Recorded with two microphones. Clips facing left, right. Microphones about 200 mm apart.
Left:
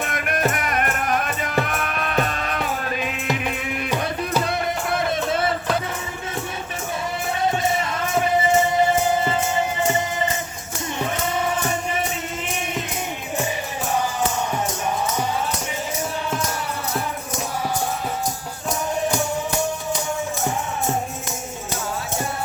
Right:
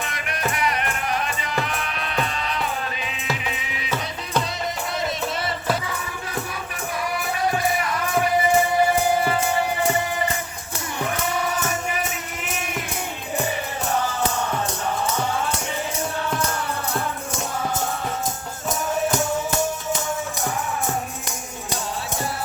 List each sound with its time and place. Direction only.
0.0 s music: 50° left (ahead or behind)
7.4 s music: 25° left (ahead or behind)
11.3 s music: 25° left (ahead or behind)